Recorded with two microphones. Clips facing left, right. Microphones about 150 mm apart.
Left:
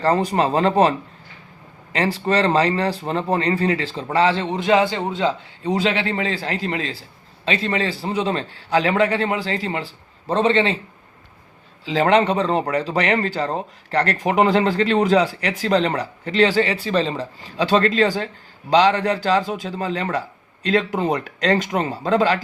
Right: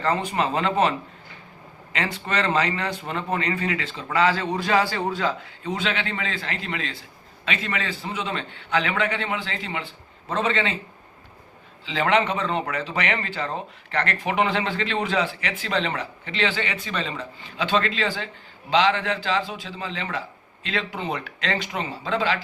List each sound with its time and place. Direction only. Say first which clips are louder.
0.0 s speech: left 5 dB; 35° left (ahead or behind)
5.7 s speech: left 7 dB; 35° left (ahead or behind)
11.9 s a man's voice: left 5 dB; 35° left (ahead or behind)